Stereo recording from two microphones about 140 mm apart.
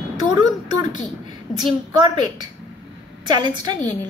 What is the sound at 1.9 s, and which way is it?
A woman's voice, 30° right (ahead or behind).